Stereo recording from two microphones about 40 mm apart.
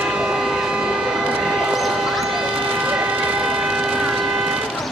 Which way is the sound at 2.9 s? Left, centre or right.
Right.